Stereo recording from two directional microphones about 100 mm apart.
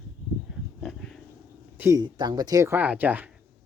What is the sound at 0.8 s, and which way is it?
Dog, 5° left (ahead or behind).